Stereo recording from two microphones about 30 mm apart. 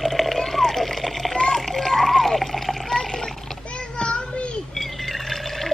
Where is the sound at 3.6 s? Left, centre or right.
Left.